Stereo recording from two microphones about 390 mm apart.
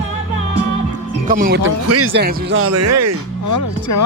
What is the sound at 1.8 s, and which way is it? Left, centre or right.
Speech, right.